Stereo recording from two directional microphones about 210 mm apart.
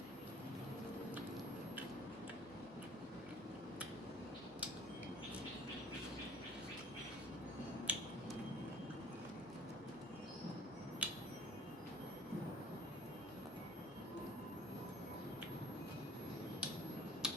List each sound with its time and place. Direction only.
7.9 s finger snapping: 5° right (ahead or behind)
11.0 s tuning fork: 5° right (ahead or behind)
17.2 s a sound: 5° right (ahead or behind)